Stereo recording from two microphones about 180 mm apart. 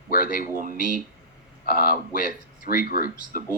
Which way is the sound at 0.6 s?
45° right (ahead or behind).